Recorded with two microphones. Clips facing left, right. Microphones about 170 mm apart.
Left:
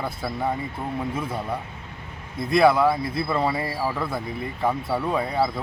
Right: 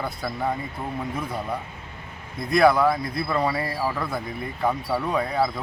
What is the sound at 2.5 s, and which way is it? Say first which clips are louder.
Speech: even; centre (ahead or behind).